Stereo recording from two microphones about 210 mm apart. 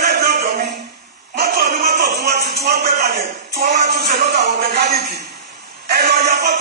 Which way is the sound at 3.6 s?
50° right (ahead or behind).